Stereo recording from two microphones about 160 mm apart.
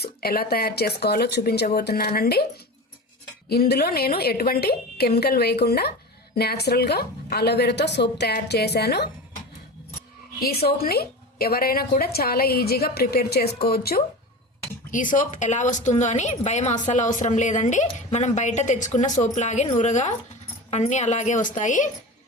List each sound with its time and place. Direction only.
0.0 s speech: 75° left (ahead or behind)
3.5 s a woman's voice: 80° left
10.4 s a woman's voice: 80° left
15.1 s speech: 55° left (ahead or behind)